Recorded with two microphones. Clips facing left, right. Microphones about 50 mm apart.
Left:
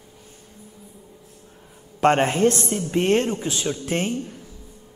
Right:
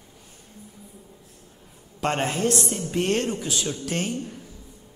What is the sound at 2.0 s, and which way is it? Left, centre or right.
Speech, left.